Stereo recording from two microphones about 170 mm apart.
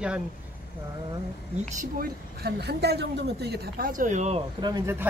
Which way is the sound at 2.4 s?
75° right (ahead or behind).